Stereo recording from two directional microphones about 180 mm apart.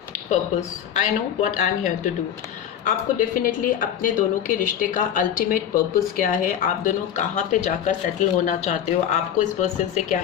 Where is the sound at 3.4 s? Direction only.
50° left (ahead or behind).